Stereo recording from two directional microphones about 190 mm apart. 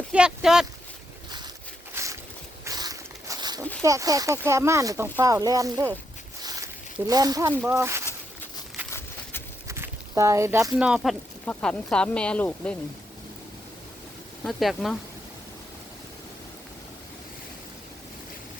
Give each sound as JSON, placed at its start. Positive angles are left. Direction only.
{"t": 0.1, "sound": "speech", "side_deg": -5}
{"t": 2.0, "sound": "boat", "side_deg": -15}
{"t": 2.6, "sound": "a sound", "side_deg": -20}
{"t": 3.8, "sound": "speech", "side_deg": -20}
{"t": 6.4, "sound": "a sound", "side_deg": -20}
{"t": 7.1, "sound": "speech", "side_deg": -20}
{"t": 9.6, "sound": "a sound", "side_deg": -15}
{"t": 10.8, "sound": "speech", "side_deg": -5}
{"t": 14.4, "sound": "speech", "side_deg": 0}